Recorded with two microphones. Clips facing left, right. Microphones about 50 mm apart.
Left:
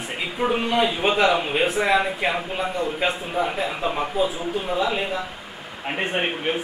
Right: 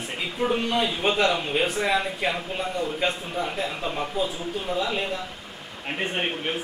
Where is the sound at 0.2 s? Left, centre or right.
Centre.